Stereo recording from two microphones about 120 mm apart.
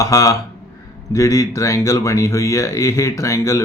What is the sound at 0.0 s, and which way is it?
Speech, 25° left (ahead or behind).